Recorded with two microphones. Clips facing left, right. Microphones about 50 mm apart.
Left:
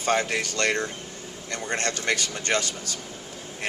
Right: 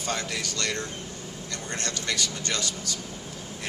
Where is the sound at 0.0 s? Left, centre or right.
Left.